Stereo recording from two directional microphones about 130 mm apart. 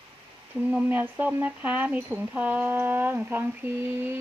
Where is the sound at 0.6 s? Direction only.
10° right (ahead or behind).